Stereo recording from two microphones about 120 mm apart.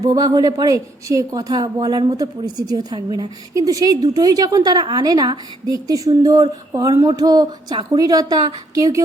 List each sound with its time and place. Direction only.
0.0 s a woman's voice: 35° right (ahead or behind)